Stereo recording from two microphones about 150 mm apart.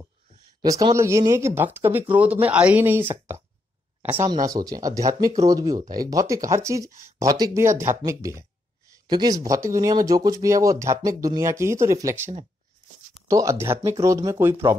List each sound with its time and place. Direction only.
0.6 s speech: 25° right (ahead or behind)
4.5 s speech: 25° right (ahead or behind)
8.9 s a sound: 25° right (ahead or behind)
9.4 s speech: 20° right (ahead or behind)
13.3 s speech: 20° right (ahead or behind)